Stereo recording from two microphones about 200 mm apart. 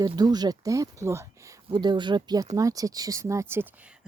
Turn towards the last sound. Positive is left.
turn(degrees=-10)  # may be behind; listen again after turning